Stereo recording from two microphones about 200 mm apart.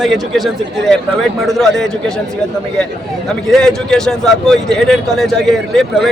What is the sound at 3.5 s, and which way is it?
A man's voice, centre (ahead or behind).